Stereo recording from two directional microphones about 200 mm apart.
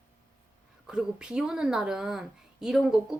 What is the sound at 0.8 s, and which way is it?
Speech, 5° right (ahead or behind).